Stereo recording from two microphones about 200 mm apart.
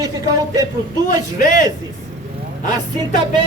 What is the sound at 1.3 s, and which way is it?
Speech, 40° left (ahead or behind).